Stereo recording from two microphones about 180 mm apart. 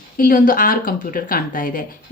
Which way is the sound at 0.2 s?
50° left (ahead or behind).